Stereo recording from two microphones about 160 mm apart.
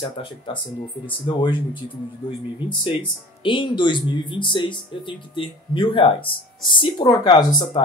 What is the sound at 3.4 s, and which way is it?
Speech, 30° left (ahead or behind).